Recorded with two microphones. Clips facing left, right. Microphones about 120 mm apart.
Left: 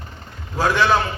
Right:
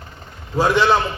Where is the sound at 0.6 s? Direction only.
20° right (ahead or behind).